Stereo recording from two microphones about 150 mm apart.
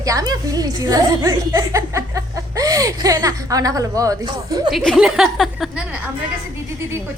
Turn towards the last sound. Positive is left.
turn(degrees=0)  # may be behind; listen again after turning